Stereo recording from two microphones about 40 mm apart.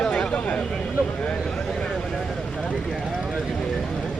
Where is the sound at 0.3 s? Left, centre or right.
Left.